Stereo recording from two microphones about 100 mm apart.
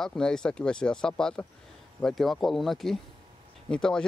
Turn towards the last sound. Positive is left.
turn(degrees=10)  # may be behind; listen again after turning